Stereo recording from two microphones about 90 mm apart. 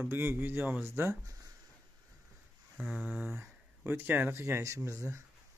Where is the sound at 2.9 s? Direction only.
15° right (ahead or behind).